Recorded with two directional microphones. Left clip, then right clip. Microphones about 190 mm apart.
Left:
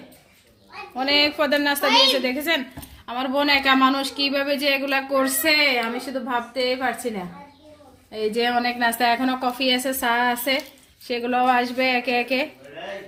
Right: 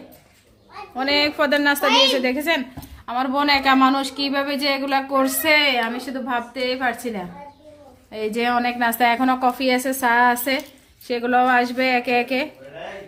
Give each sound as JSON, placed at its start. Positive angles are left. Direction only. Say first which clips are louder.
{"t": 0.9, "sound": "a woman's voice", "louder": "even", "side_deg": 5}
{"t": 1.8, "sound": "a woman's voice", "louder": "left 1 dB", "side_deg": -55}
{"t": 2.1, "sound": "a woman's voice", "louder": "right 2 dB", "side_deg": 0}